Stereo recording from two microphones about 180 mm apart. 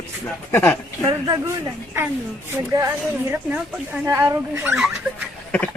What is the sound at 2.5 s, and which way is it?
Speech, 15° right (ahead or behind).